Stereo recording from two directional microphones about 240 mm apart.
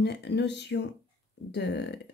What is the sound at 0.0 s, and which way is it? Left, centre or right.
Speech, left.